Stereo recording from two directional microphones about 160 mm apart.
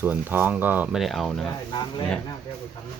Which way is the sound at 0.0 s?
10° right (ahead or behind).